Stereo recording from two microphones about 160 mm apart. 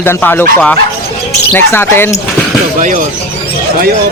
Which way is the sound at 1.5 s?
15° left (ahead or behind).